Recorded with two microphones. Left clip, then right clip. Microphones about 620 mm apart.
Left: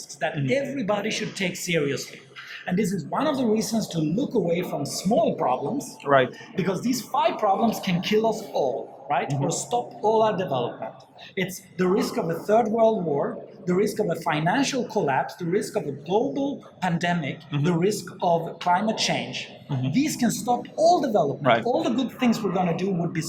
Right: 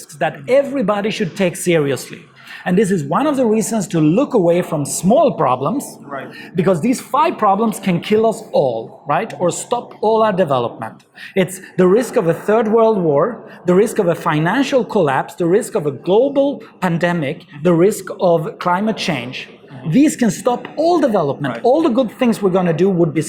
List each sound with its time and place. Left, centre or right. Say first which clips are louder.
0.2 s speech: right 11 dB; right
6.1 s speech: left 11 dB; left
6.9 s speech: right 8 dB; right